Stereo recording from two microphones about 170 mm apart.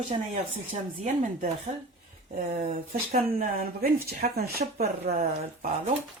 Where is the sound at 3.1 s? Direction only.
60° right (ahead or behind).